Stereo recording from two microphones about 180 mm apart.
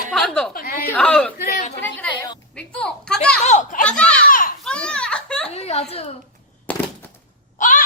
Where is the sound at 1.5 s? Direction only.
45° left (ahead or behind).